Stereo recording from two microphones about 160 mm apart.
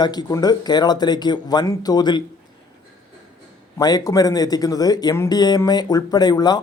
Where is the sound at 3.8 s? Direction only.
25° left (ahead or behind).